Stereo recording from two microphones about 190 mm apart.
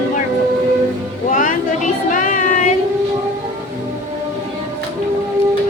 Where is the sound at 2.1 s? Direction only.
40° left (ahead or behind).